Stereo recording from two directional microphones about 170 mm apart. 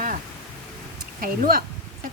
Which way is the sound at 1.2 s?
60° right (ahead or behind).